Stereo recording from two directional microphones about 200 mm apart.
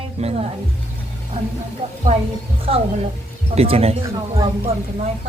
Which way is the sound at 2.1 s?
35° right (ahead or behind).